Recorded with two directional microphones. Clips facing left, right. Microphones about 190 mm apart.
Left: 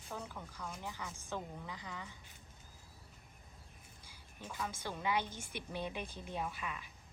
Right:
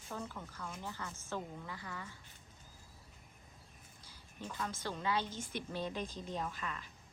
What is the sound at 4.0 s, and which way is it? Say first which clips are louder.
A woman's voice: right 4 dB; 10° left (ahead or behind).